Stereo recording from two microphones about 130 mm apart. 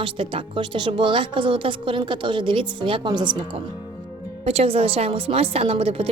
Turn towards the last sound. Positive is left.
turn(degrees=-50)  # may be behind; listen again after turning